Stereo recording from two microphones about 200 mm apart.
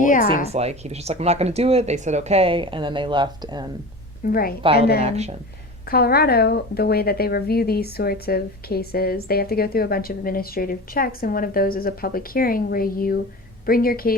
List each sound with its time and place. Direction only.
0.0 s speech: 40° left (ahead or behind)
0.5 s speech: 30° right (ahead or behind)
4.3 s speech: 45° left (ahead or behind)
5.0 s speech: 30° right (ahead or behind)
5.9 s speech: 50° left (ahead or behind)